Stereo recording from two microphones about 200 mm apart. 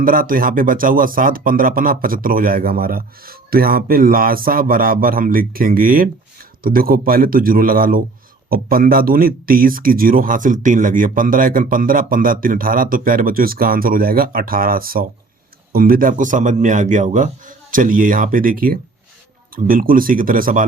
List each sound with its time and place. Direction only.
0.0 s speech: 45° right (ahead or behind)